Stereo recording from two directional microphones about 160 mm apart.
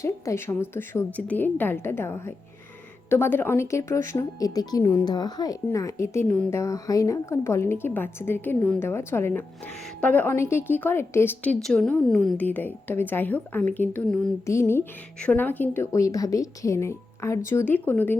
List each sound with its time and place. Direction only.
0.0 s a woman's voice: 15° left (ahead or behind)
11.6 s a woman's voice: 5° left (ahead or behind)